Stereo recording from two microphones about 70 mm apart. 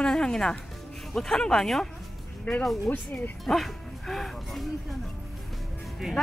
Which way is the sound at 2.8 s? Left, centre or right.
Left.